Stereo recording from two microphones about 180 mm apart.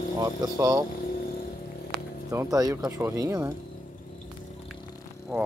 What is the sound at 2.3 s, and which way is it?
Speech, 20° right (ahead or behind).